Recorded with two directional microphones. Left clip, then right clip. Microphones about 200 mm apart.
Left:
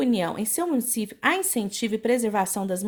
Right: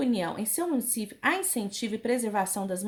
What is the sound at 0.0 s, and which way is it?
Speech, 35° left (ahead or behind).